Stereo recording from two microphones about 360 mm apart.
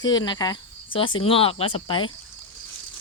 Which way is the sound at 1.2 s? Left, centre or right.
Centre.